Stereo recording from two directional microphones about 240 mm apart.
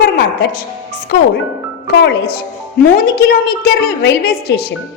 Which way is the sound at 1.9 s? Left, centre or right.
Left.